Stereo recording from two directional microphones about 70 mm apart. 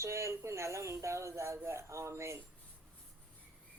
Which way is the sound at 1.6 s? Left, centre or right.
Right.